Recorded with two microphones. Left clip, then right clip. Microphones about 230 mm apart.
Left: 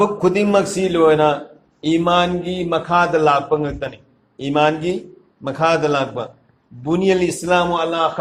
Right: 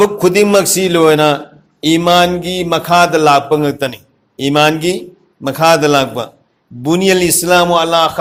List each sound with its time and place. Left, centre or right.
0.0 s a man's voice: right